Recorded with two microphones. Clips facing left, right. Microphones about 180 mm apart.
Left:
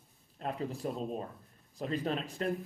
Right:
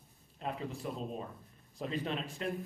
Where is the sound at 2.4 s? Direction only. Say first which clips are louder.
Left 5 dB; 40° left (ahead or behind).